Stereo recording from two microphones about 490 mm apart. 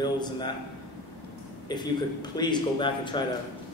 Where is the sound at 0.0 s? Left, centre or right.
Centre.